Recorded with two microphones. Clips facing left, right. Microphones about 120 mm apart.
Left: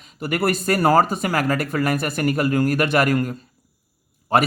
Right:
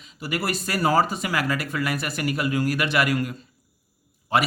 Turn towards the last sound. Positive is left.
turn(degrees=50)  # may be behind; listen again after turning